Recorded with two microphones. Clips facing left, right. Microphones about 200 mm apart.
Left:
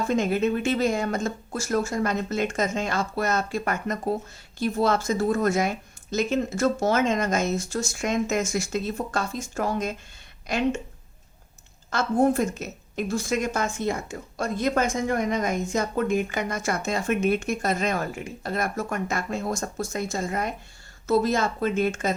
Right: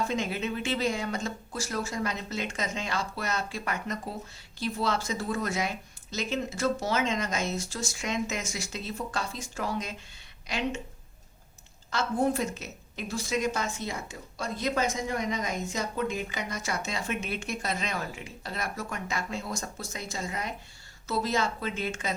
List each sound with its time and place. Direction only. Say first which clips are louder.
0.1 s speech: left 8 dB; 50° left (ahead or behind)
11.9 s speech: left 6 dB; 50° left (ahead or behind)